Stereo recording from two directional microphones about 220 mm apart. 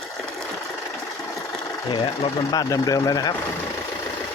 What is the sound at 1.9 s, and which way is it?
Speech, 20° left (ahead or behind).